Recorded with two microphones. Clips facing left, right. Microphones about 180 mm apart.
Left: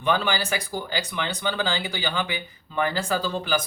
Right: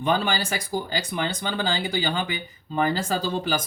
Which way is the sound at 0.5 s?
45° right (ahead or behind).